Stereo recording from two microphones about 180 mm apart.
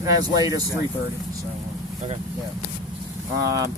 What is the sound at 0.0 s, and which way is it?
Speech, 20° right (ahead or behind).